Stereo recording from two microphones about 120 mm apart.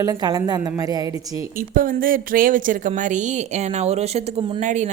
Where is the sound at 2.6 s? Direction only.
90° right; by 4.5 s 60° right (ahead or behind).